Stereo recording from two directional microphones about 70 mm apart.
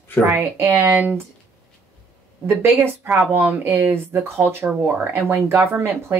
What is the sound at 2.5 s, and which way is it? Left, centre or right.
Speech, right.